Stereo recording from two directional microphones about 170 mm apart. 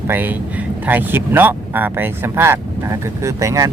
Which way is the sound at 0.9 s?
10° right (ahead or behind).